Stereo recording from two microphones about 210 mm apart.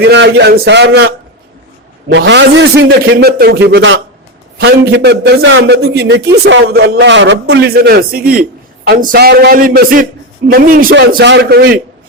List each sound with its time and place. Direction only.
0.0 s a man's voice: 55° right (ahead or behind)